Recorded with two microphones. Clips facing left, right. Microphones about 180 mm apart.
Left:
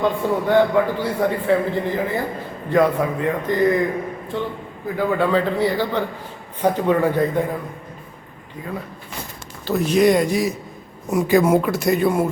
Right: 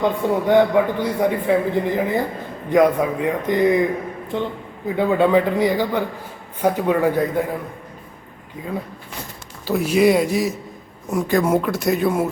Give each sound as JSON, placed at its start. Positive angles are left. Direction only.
{"t": 0.0, "sound": "a man's voice", "side_deg": -15}
{"t": 9.6, "sound": "speech", "side_deg": -10}